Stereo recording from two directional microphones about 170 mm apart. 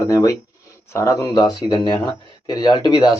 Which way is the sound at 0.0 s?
20° left (ahead or behind).